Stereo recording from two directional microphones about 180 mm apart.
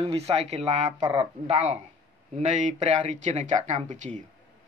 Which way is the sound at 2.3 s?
40° right (ahead or behind).